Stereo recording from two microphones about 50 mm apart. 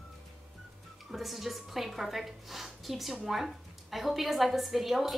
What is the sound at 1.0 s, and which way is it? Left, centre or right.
A woman's voice, centre.